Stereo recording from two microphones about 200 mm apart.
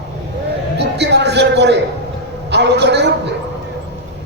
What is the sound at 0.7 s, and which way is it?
A man's voice, 60° right (ahead or behind).